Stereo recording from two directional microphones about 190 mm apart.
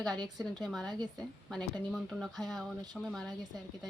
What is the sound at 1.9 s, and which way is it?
Speech, centre (ahead or behind).